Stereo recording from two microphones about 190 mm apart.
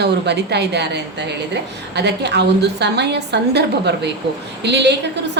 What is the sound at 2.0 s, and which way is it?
A woman's voice, 60° right (ahead or behind).